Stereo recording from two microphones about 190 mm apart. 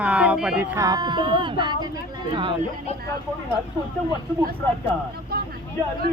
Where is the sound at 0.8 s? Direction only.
20° right (ahead or behind).